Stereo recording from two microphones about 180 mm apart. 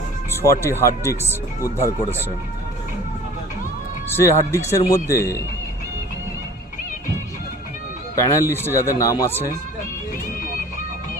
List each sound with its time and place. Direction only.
0.4 s speech: 15° left (ahead or behind)
4.1 s speech: 15° left (ahead or behind)
8.1 s speech: 15° left (ahead or behind)